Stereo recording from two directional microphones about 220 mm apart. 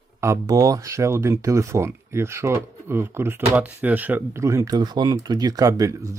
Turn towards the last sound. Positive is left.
turn(degrees=-15)  # may be behind; listen again after turning